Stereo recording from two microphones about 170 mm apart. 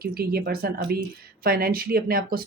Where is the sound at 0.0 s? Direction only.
60° right (ahead or behind).